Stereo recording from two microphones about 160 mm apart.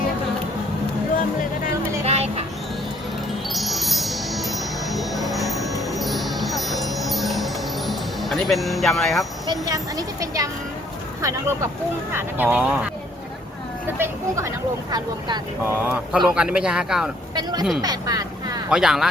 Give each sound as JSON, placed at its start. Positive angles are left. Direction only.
{"t": 1.1, "sound": "music", "side_deg": 60}
{"t": 2.0, "sound": "a sound", "side_deg": -40}
{"t": 3.5, "sound": "wind chime", "side_deg": 0}
{"t": 6.0, "sound": "chime", "side_deg": 0}
{"t": 9.5, "sound": "speech", "side_deg": -25}
{"t": 14.0, "sound": "speech", "side_deg": -15}
{"t": 15.9, "sound": "a man's voice", "side_deg": -5}
{"t": 17.3, "sound": "speech", "side_deg": -25}
{"t": 17.8, "sound": "vehicle", "side_deg": -25}
{"t": 18.7, "sound": "a man's voice", "side_deg": -5}